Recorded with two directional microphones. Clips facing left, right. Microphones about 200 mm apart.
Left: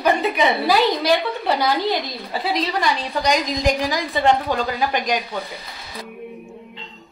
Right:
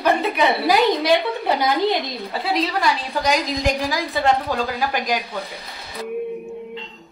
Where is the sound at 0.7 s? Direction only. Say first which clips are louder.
Right 2 dB; 15° right (ahead or behind).